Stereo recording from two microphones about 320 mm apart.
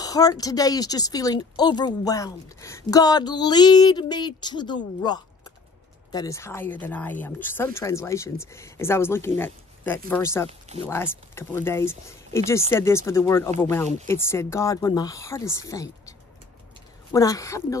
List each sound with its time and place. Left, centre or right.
0.0 s speech: centre
6.1 s speech: centre
17.1 s speech: centre